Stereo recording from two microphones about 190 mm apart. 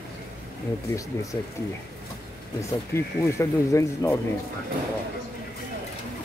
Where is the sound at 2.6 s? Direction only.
15° left (ahead or behind).